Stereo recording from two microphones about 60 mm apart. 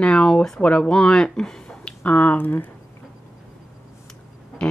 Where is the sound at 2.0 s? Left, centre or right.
Left.